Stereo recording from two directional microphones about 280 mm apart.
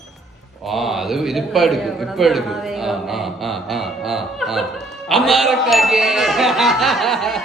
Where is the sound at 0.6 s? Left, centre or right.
Centre.